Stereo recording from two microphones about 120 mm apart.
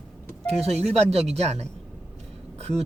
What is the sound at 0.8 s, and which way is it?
Speech, 60° right (ahead or behind).